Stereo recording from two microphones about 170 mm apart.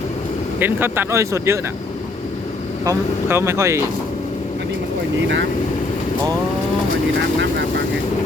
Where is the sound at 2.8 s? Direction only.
15° right (ahead or behind).